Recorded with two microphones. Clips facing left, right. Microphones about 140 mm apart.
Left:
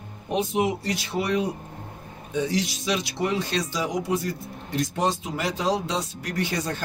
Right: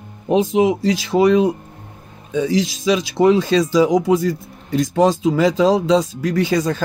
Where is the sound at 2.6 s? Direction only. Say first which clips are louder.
Right 9 dB; 90° right.